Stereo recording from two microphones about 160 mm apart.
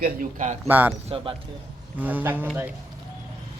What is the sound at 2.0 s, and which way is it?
Speech, 10° right (ahead or behind).